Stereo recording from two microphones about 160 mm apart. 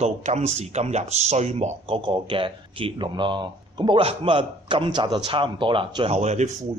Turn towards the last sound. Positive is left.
turn(degrees=-45)  # may be behind; listen again after turning